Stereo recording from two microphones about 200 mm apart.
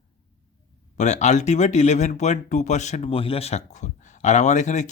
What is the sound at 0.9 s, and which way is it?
Speech, 35° left (ahead or behind).